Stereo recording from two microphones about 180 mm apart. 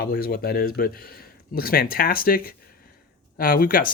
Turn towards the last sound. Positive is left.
turn(degrees=55)  # may be behind; listen again after turning